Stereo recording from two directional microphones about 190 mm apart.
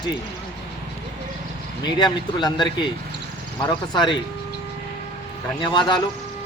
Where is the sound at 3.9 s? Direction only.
25° left (ahead or behind).